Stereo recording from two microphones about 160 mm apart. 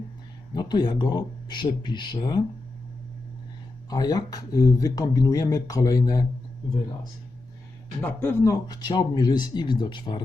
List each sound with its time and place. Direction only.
0.5 s speech: 25° left (ahead or behind)
3.8 s speech: 25° left (ahead or behind)
8.0 s speech: 15° left (ahead or behind)